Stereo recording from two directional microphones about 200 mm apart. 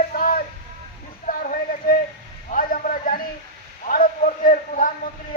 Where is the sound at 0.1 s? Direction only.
45° left (ahead or behind).